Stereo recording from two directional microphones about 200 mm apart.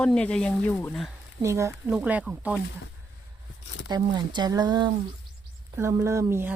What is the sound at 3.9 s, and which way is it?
Speech, 20° right (ahead or behind).